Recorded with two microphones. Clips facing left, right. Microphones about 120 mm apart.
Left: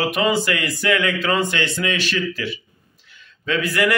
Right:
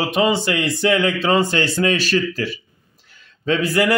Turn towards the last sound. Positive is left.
turn(degrees=-30)  # may be behind; listen again after turning